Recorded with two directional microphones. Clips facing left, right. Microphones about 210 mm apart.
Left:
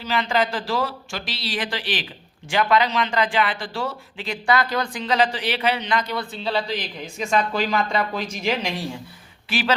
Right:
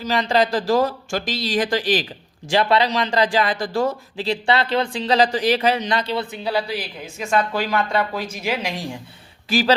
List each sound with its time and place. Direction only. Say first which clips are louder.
0.0 s a man's voice: right 3 dB; 35° right (ahead or behind)
6.3 s speech: right 2 dB; 10° right (ahead or behind)
9.5 s a man's voice: right 5 dB; 40° right (ahead or behind)